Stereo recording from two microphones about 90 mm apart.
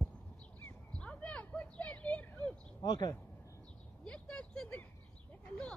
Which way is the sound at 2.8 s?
50° left (ahead or behind).